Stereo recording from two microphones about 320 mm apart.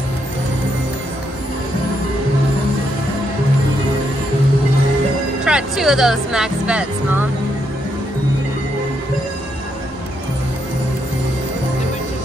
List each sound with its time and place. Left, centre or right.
5.4 s speech: centre